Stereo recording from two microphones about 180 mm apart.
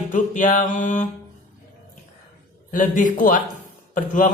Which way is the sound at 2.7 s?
45° left (ahead or behind).